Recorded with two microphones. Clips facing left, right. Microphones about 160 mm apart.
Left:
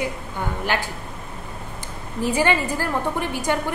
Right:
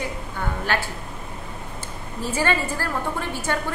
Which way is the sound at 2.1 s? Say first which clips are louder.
Left 3 dB; 15° left (ahead or behind).